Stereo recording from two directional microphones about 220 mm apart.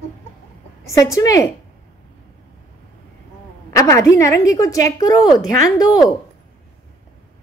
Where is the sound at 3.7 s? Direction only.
15° left (ahead or behind).